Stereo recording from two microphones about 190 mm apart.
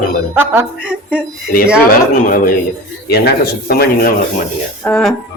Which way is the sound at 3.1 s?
60° left (ahead or behind).